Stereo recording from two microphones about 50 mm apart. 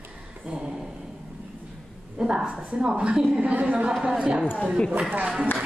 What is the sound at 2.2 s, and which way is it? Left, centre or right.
A woman's voice, centre.